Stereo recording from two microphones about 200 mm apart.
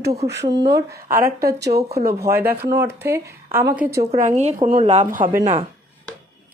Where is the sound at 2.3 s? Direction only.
10° right (ahead or behind).